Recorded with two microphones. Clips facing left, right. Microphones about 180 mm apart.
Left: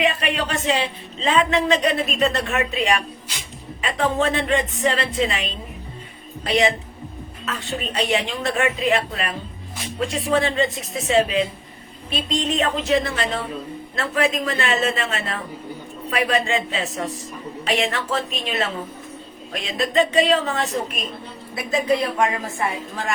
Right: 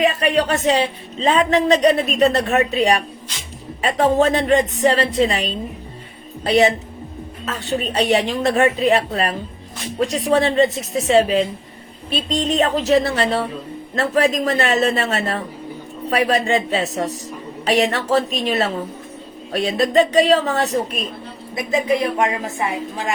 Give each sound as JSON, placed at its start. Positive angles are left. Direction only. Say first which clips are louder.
{"t": 0.0, "sound": "speech", "louder": "right 5 dB", "side_deg": -40}
{"t": 7.4, "sound": "speech", "louder": "right 5 dB", "side_deg": -40}
{"t": 12.4, "sound": "speech", "louder": "right 5 dB", "side_deg": -40}
{"t": 21.5, "sound": "a woman's voice", "louder": "right 2 dB", "side_deg": -20}